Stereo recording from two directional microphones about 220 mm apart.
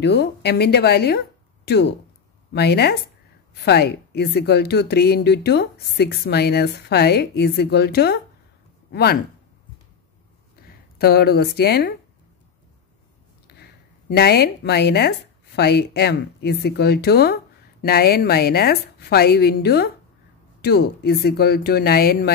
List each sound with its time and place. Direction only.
0.0 s speech: 50° left (ahead or behind)
2.5 s speech: 50° left (ahead or behind)
11.0 s speech: 45° left (ahead or behind)
13.5 s a sound: 50° left (ahead or behind)
14.1 s speech: 45° left (ahead or behind)